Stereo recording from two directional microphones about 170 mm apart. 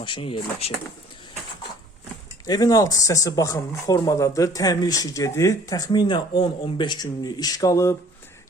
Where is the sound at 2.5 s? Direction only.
20° left (ahead or behind).